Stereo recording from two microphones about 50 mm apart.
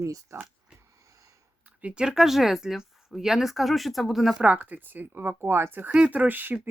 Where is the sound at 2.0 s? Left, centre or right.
Centre.